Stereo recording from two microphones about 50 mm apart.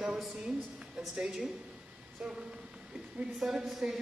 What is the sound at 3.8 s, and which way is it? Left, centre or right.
Speech, centre.